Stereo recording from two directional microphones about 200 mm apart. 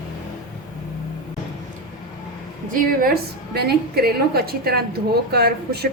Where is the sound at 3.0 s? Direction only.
50° right (ahead or behind).